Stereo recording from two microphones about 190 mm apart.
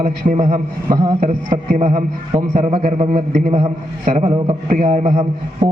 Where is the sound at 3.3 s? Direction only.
45° right (ahead or behind).